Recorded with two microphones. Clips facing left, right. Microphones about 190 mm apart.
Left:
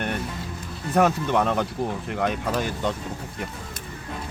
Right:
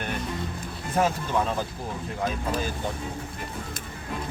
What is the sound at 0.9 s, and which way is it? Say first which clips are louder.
Speech: left 4 dB; 65° left (ahead or behind).